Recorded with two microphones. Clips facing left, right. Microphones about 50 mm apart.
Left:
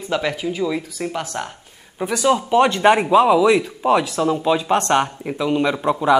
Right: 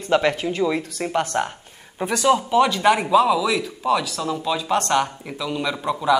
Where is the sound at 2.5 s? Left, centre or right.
Left.